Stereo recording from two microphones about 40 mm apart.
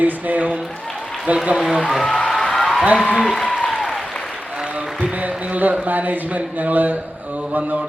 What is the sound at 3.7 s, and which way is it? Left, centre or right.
Applause, centre.